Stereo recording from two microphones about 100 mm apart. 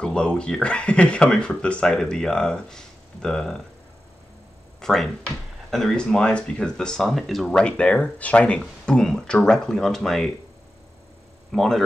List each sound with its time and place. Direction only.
0.0 s speech: 10° left (ahead or behind)
4.7 s speech: 5° left (ahead or behind)
11.5 s speech: 5° left (ahead or behind)